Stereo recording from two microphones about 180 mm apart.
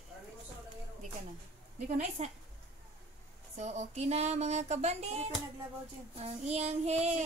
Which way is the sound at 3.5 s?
40° right (ahead or behind).